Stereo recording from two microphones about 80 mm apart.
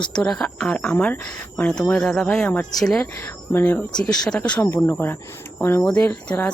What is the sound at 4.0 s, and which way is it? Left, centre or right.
Speech, centre.